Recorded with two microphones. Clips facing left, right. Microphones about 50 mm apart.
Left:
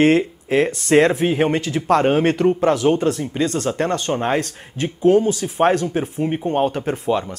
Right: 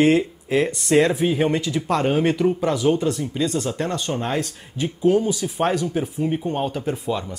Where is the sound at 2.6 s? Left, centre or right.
Left.